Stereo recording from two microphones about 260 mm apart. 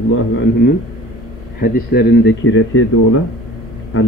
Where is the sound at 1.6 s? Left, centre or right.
Left.